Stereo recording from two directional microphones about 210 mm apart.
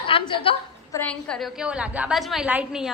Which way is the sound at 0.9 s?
5° left (ahead or behind).